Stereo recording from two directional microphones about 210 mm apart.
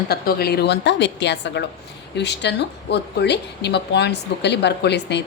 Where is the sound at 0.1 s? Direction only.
50° left (ahead or behind).